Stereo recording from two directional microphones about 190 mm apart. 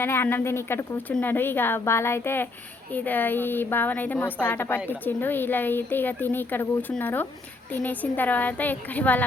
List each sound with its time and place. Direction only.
0.0 s a woman's voice: 10° left (ahead or behind)